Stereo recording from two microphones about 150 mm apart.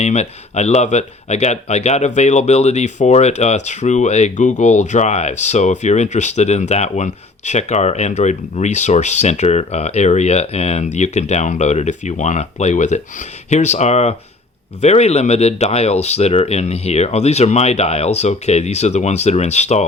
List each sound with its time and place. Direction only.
0.0 s speech: 50° left (ahead or behind)